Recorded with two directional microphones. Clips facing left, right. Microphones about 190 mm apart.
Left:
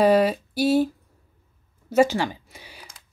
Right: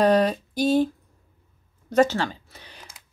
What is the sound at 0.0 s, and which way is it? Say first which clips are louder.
Speech: left 1 dB; 5° left (ahead or behind).